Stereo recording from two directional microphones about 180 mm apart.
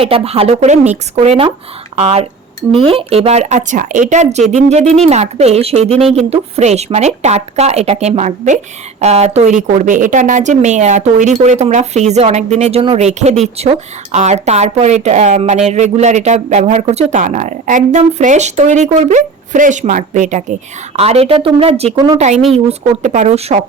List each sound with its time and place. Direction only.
0.0 s a woman's voice: 30° right (ahead or behind)
21.9 s a woman's voice: 20° right (ahead or behind)
22.4 s a woman's voice: centre (ahead or behind)
23.0 s a woman's voice: 40° right (ahead or behind)